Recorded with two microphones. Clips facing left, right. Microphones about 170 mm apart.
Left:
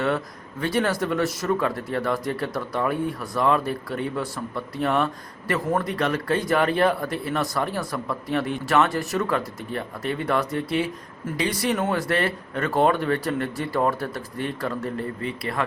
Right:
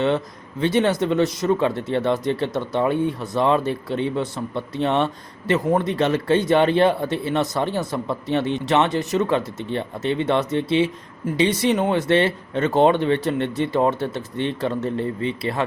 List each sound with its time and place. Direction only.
0.6 s speech: 25° right (ahead or behind)